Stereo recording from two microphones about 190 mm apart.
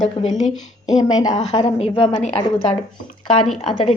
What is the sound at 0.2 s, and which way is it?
A woman's voice, 30° left (ahead or behind).